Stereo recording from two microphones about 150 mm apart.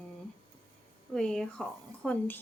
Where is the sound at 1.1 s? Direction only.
5° left (ahead or behind).